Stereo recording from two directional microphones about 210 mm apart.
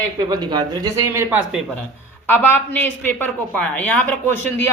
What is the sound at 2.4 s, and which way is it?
A woman's voice, 10° left (ahead or behind).